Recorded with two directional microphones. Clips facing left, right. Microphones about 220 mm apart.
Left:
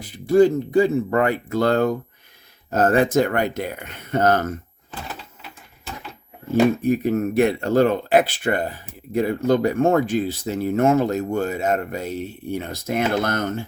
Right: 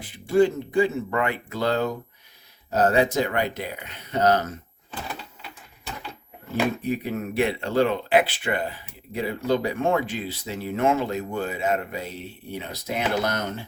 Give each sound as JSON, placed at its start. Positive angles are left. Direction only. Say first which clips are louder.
{"t": 0.0, "sound": "speech", "louder": "left 4 dB", "side_deg": 40}
{"t": 6.8, "sound": "speech", "louder": "left 7 dB", "side_deg": 45}